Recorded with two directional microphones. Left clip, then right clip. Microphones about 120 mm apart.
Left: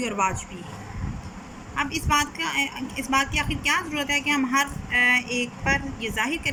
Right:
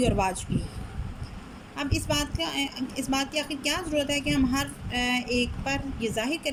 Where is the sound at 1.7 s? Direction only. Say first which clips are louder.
Left 6 dB; 25° right (ahead or behind).